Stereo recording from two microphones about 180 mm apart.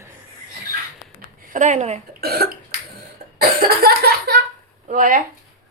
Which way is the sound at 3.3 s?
60° right (ahead or behind).